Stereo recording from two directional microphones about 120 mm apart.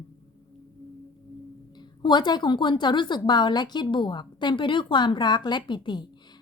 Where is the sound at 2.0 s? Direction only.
40° left (ahead or behind).